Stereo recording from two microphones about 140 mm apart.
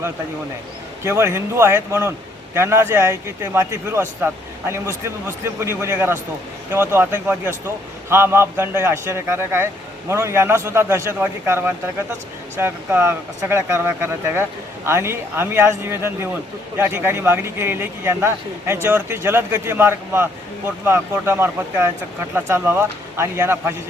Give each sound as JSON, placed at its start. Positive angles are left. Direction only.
{"t": 1.0, "sound": "a man's voice", "side_deg": -20}